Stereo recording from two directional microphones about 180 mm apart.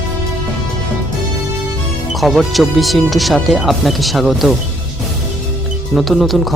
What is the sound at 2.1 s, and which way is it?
Speech, centre (ahead or behind).